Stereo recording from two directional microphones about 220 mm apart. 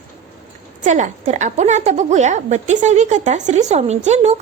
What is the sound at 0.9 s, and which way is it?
Speech, 35° right (ahead or behind).